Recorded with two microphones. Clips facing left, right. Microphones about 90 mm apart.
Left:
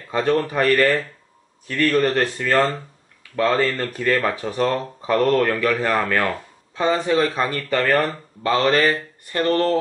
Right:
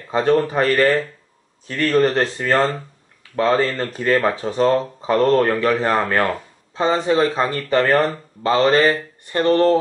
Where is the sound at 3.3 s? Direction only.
30° right (ahead or behind).